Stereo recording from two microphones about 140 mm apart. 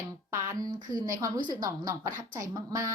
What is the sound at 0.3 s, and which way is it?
A woman's voice, 20° right (ahead or behind).